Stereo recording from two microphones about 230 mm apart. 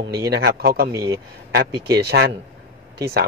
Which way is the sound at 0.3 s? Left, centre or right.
Right.